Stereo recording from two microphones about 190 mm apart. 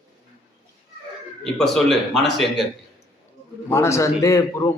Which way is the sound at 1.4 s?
Centre (ahead or behind).